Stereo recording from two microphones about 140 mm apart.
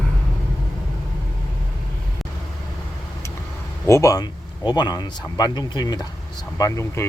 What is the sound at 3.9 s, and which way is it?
Speech, 20° left (ahead or behind).